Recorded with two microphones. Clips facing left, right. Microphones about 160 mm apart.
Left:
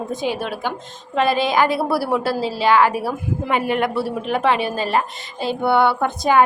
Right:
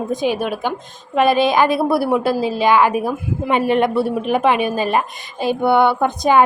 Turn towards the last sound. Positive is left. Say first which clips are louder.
# right 2 dB
turn(degrees=-20)  # may be behind; listen again after turning